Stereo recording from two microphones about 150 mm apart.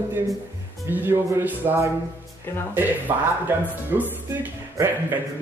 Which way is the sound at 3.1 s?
20° right (ahead or behind).